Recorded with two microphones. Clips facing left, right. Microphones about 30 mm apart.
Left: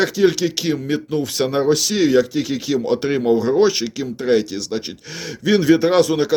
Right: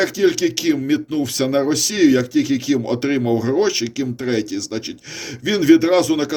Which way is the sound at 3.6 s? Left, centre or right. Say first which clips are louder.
Left 2 dB; centre.